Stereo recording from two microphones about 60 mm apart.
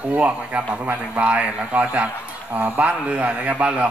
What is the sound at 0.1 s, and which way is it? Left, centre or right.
A man's voice, right.